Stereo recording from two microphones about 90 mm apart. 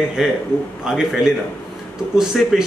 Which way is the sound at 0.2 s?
5° right (ahead or behind).